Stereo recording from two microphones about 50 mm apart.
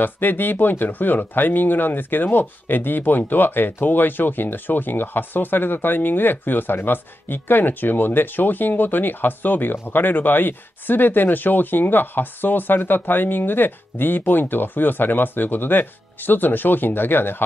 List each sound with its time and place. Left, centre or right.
0.0 s speech: left